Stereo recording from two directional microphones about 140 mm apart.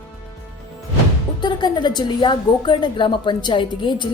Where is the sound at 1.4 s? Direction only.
30° left (ahead or behind).